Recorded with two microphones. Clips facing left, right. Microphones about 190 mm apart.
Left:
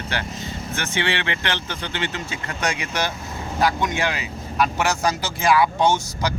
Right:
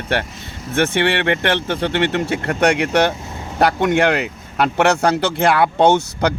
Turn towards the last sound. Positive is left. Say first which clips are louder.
# right 6 dB
turn(degrees=-60)  # may be behind; listen again after turning